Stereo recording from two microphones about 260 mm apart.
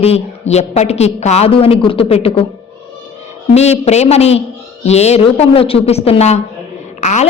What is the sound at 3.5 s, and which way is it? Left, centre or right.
A woman's voice, left.